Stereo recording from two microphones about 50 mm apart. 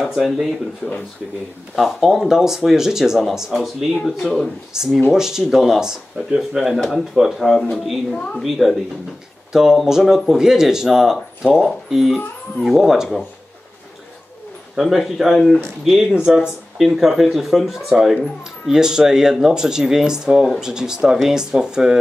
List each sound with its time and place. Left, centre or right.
0.1 s speech: centre
0.8 s speech: left
1.8 s speech: centre
3.5 s speech: centre
4.7 s speech: centre
8.1 s a woman's voice: centre
8.4 s speech: centre
9.5 s speech: centre
14.8 s speech: centre